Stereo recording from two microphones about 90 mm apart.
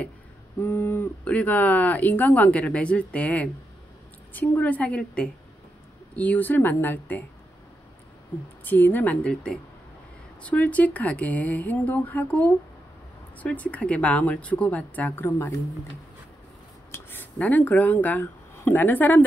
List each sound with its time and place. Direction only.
0.6 s speech: 25° left (ahead or behind)
8.6 s speech: 20° left (ahead or behind)
16.9 s speech: 20° left (ahead or behind)